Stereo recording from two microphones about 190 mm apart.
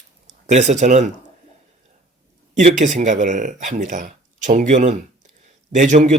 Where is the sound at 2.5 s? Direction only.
40° right (ahead or behind).